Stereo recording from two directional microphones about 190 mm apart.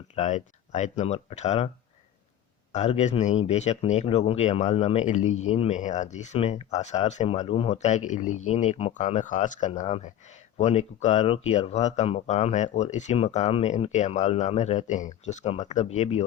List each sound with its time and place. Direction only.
0.2 s speech: 40° left (ahead or behind)
2.7 s speech: 35° left (ahead or behind)